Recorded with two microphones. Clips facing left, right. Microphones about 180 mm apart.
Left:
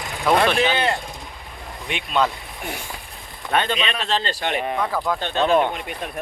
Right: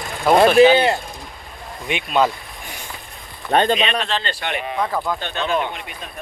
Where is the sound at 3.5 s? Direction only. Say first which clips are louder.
Right 5 dB; 40° right (ahead or behind).